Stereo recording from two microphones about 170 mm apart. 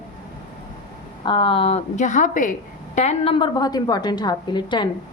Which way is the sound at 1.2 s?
30° left (ahead or behind).